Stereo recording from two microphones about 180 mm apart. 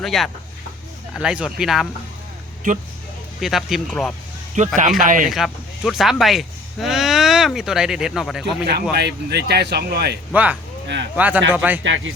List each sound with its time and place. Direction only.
0.0 s speech: centre (ahead or behind)
3.4 s speech: centre (ahead or behind)
4.5 s speech: 45° right (ahead or behind)
5.3 s speech: centre (ahead or behind)
8.6 s speech: 65° right (ahead or behind)
10.3 s speech: 10° right (ahead or behind)
10.8 s speech: 75° right (ahead or behind)
11.5 s speech: 10° right (ahead or behind)
11.8 s speech: 90° right